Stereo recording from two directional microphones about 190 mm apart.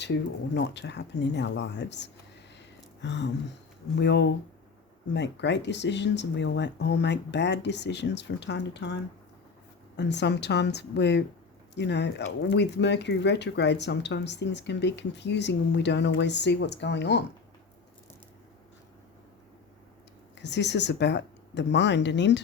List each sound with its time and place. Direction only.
0.0 s speech: 65° left (ahead or behind)
2.6 s a sound: 65° left (ahead or behind)
3.9 s speech: 65° left (ahead or behind)
10.0 s speech: 65° left (ahead or behind)
20.4 s speech: 65° left (ahead or behind)